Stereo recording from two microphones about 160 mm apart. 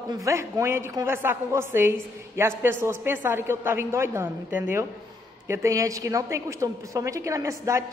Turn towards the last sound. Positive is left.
turn(degrees=-20)  # may be behind; listen again after turning